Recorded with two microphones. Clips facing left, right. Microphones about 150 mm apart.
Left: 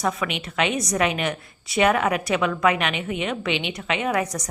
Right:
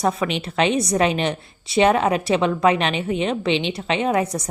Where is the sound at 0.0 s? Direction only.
30° right (ahead or behind).